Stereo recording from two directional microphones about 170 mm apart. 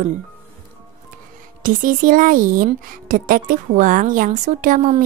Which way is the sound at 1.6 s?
50° right (ahead or behind).